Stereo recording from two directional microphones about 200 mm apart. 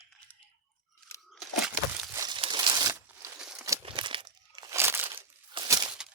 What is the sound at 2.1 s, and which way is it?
Crumpling, 20° right (ahead or behind).